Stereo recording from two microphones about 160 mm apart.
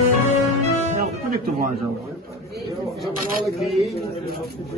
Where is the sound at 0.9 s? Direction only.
65° right (ahead or behind).